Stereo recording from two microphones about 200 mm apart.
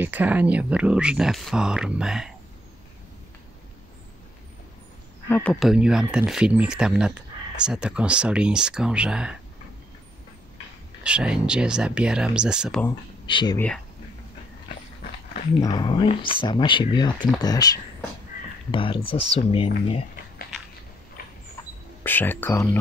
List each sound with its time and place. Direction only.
0.0 s speech: 10° right (ahead or behind)
5.3 s speech: 5° left (ahead or behind)
11.1 s speech: 5° right (ahead or behind)
13.3 s speech: 25° left (ahead or behind)
15.6 s speech: 20° left (ahead or behind)
21.2 s a sound: 45° left (ahead or behind)
22.0 s speech: 10° left (ahead or behind)